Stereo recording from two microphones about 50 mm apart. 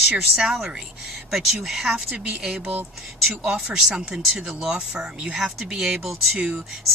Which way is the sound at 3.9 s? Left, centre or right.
Centre.